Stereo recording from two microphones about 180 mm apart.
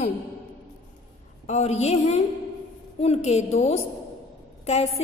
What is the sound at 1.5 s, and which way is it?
A woman's voice, 35° left (ahead or behind).